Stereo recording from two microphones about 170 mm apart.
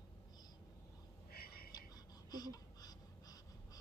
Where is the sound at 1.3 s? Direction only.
65° left (ahead or behind).